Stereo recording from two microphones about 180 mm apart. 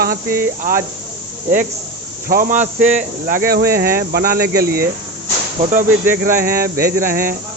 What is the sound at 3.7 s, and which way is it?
Speech, 55° right (ahead or behind).